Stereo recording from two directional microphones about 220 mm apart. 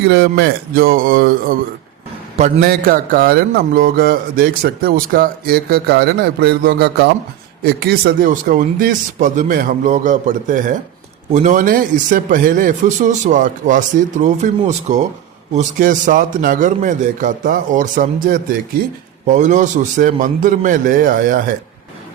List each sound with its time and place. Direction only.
0.1 s a man's voice: 45° right (ahead or behind)